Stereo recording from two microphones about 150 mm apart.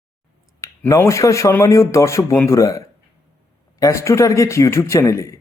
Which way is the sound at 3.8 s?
20° left (ahead or behind).